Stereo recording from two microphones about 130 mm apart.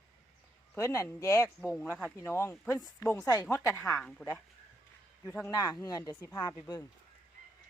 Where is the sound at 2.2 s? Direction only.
20° left (ahead or behind).